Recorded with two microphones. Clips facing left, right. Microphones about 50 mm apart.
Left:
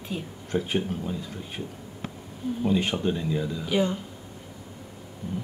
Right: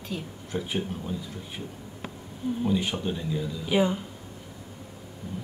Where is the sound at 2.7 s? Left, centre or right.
Left.